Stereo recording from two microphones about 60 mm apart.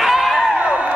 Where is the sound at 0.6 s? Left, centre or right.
Centre.